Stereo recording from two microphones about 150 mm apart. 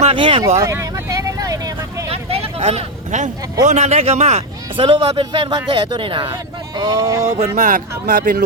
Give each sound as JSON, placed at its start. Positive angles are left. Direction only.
{"t": 0.0, "sound": "speech", "side_deg": -35}
{"t": 0.4, "sound": "vehicle", "side_deg": -20}
{"t": 2.0, "sound": "a sound", "side_deg": -40}
{"t": 3.7, "sound": "speech", "side_deg": -45}
{"t": 7.0, "sound": "speech", "side_deg": -20}
{"t": 7.3, "sound": "speech", "side_deg": -50}